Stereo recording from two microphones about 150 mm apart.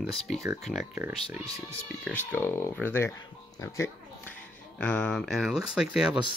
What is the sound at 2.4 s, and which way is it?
Speech, 15° left (ahead or behind).